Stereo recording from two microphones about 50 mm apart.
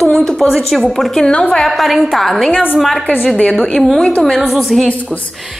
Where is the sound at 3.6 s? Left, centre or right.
Centre.